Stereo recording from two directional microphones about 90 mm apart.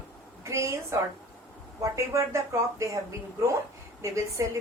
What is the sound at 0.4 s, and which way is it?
A woman's voice, 35° right (ahead or behind).